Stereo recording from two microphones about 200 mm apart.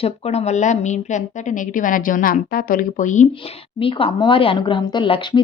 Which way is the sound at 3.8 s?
25° left (ahead or behind).